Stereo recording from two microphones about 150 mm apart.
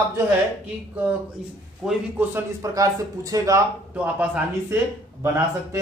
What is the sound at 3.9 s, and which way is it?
A man's voice, 10° right (ahead or behind).